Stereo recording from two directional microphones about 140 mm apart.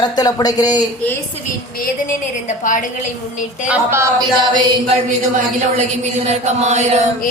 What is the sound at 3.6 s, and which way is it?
Speech, 20° right (ahead or behind).